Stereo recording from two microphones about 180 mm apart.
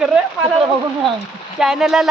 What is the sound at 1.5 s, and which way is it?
Speech, 5° right (ahead or behind).